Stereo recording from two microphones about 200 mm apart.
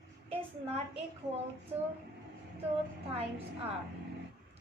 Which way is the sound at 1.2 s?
20° right (ahead or behind).